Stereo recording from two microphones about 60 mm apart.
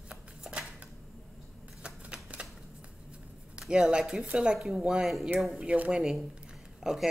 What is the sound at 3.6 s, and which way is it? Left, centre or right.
Speech, centre.